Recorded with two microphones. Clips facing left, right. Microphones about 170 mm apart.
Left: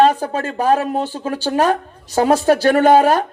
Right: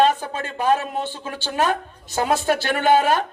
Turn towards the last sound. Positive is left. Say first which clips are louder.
# left 6 dB
turn(degrees=40)  # may be behind; listen again after turning